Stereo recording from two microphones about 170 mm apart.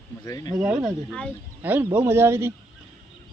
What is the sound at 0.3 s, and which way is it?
Speech, 20° left (ahead or behind).